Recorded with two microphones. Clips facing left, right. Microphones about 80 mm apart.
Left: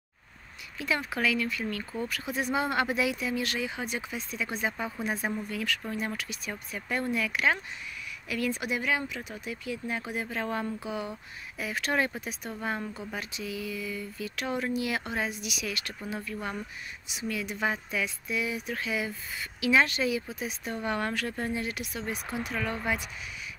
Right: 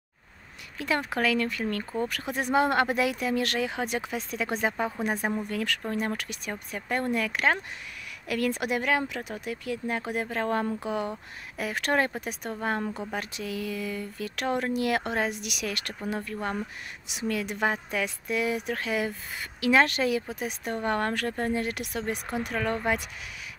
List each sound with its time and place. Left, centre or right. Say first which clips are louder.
0.7 s speech: right 3 dB; right
2.0 s a woman's voice: right 2 dB; right
5.2 s speech: right 3 dB; right
5.5 s a woman's voice: right 3 dB; right
8.3 s a woman's voice: right 3 dB; right
16.2 s speech: right 2 dB; right
17.1 s a woman's voice: right 4 dB; right